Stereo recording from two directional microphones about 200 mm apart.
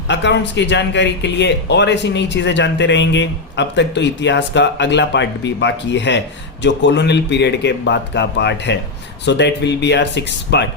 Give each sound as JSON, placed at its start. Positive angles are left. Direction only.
{"t": 0.1, "sound": "speech", "side_deg": 60}